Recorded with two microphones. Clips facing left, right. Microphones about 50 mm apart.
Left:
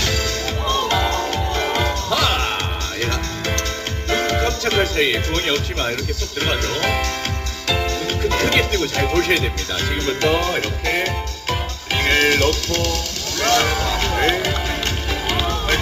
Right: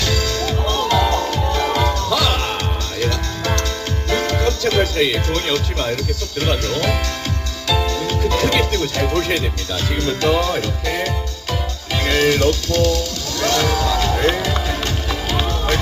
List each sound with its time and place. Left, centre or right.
0.0 s music: left
6.4 s speech: left
7.7 s music: left
10.1 s speech: left
13.4 s music: left